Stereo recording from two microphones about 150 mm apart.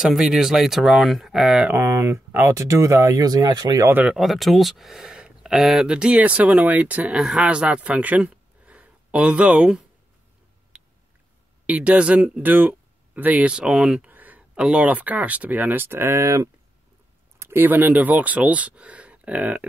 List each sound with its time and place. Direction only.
0.0 s speech: 5° right (ahead or behind)
1.8 s speech: 15° right (ahead or behind)
3.9 s speech: 5° right (ahead or behind)
10.7 s a sound: 5° right (ahead or behind)
11.6 s speech: 10° right (ahead or behind)